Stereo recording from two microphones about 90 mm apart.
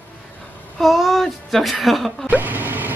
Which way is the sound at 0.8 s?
Centre (ahead or behind).